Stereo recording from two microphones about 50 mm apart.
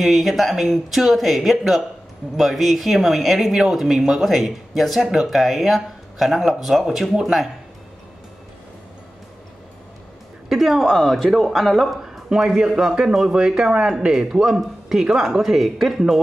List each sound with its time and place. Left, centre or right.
0.0 s speech: centre
10.5 s speech: centre
12.0 s a sound: centre
12.5 s speech: centre